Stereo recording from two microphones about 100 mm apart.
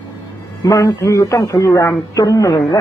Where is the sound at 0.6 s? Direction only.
35° left (ahead or behind).